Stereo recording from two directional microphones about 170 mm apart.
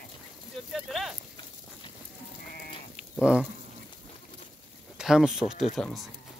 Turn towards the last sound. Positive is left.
turn(degrees=0)  # may be behind; listen again after turning